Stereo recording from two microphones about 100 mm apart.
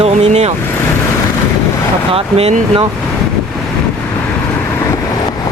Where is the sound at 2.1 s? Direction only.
80° right.